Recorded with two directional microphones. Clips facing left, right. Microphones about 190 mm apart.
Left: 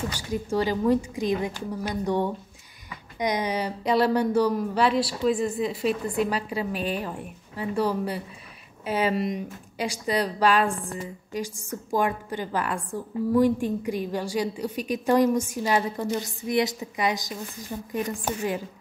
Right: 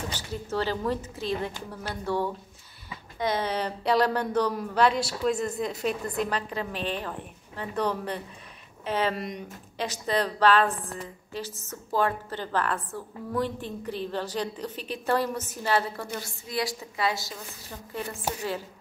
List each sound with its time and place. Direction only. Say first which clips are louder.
0.1 s a woman's voice: left 5 dB; 10° left (ahead or behind)